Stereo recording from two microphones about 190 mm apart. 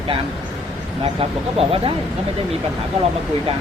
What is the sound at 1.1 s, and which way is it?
Speech, 30° right (ahead or behind).